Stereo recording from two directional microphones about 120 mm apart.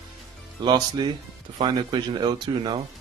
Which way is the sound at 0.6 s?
40° right (ahead or behind).